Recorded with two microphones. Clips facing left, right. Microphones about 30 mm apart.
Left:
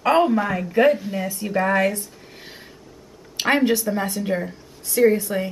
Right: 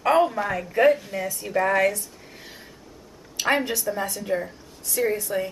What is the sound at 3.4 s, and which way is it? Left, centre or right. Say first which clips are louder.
Speech: left 4 dB; left.